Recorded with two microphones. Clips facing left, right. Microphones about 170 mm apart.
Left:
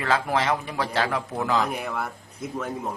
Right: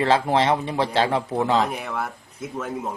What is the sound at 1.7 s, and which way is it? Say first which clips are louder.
Speech: right 1 dB; centre (ahead or behind).